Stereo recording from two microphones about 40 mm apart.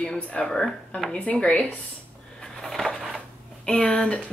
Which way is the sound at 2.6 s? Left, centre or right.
Centre.